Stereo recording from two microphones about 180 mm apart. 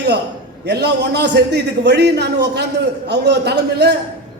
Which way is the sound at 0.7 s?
70° right (ahead or behind).